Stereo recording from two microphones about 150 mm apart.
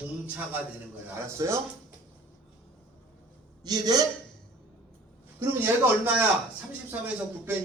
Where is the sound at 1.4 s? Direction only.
20° right (ahead or behind).